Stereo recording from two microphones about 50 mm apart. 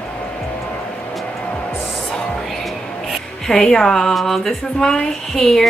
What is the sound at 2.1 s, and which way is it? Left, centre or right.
Music, centre.